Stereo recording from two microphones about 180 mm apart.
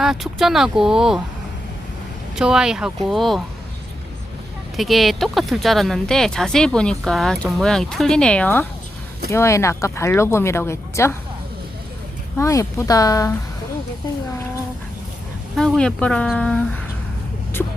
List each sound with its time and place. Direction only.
0.0 s speech: centre (ahead or behind)
2.3 s speech: 5° right (ahead or behind)
4.8 s speech: centre (ahead or behind)
12.4 s speech: 15° left (ahead or behind)
15.5 s speech: centre (ahead or behind)